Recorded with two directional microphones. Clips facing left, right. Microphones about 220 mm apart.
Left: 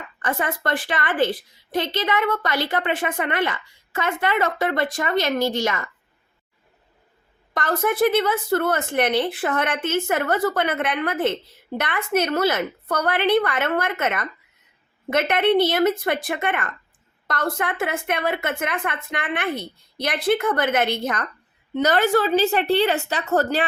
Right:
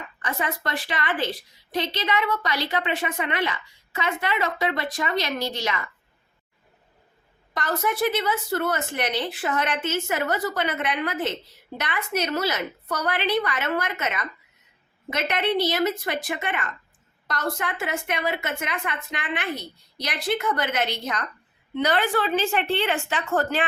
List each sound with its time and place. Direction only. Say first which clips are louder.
0.2 s a woman's voice: left 4 dB; 50° left (ahead or behind)
7.5 s a woman's voice: left 4 dB; 55° left (ahead or behind)